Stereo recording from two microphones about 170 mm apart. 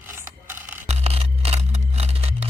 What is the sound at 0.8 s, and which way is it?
Music, 40° right (ahead or behind).